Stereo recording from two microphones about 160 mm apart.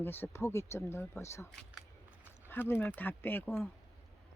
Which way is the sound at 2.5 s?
15° left (ahead or behind).